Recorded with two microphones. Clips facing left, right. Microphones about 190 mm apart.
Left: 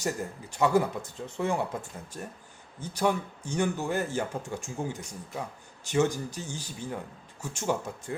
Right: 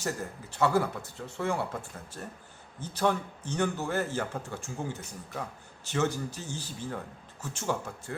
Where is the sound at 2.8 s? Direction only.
10° left (ahead or behind).